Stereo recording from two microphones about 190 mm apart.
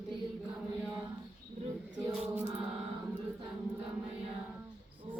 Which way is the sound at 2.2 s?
10° right (ahead or behind).